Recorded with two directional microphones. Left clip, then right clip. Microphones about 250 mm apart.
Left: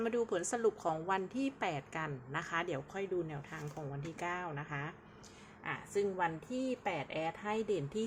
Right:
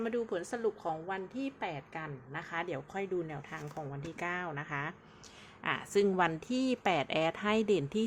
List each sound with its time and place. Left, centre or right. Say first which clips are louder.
0.0 s a woman's voice: even; centre
5.6 s a woman's voice: right 6 dB; right